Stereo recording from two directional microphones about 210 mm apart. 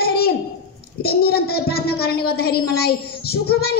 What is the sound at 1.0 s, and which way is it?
Speech, 45° left (ahead or behind).